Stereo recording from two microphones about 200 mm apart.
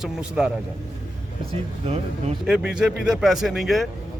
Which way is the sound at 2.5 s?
5° right (ahead or behind).